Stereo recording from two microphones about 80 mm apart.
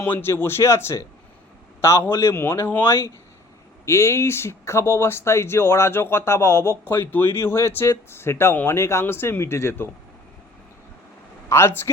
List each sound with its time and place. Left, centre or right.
0.0 s speech: left
11.4 s speech: left